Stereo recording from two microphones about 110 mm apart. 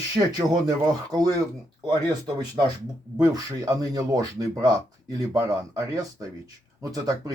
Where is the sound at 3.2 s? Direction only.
35° right (ahead or behind).